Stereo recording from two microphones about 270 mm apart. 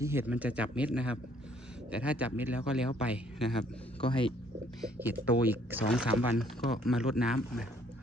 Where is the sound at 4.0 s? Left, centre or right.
Centre.